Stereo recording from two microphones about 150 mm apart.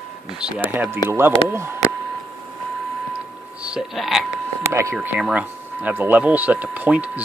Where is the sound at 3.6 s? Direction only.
5° right (ahead or behind).